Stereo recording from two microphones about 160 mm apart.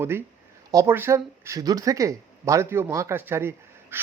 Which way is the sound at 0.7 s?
20° right (ahead or behind).